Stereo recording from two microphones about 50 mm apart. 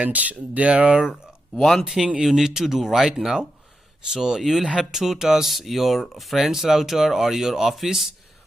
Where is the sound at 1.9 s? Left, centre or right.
Centre.